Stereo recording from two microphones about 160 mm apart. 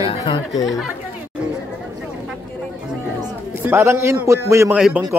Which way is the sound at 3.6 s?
15° right (ahead or behind).